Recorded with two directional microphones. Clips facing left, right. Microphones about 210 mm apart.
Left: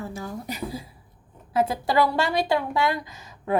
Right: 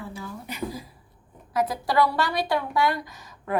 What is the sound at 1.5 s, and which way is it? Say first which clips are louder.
A woman's voice: left 1 dB; 25° left (ahead or behind).